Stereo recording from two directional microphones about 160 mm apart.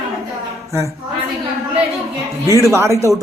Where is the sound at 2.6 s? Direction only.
15° right (ahead or behind).